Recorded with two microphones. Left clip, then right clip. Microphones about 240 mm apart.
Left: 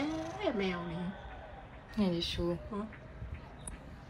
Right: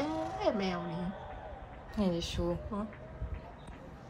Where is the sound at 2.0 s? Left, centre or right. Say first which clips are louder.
Even; centre.